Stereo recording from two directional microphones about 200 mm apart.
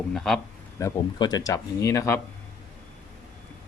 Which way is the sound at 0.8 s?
15° left (ahead or behind).